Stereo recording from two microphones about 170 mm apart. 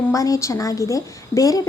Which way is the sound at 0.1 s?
20° left (ahead or behind).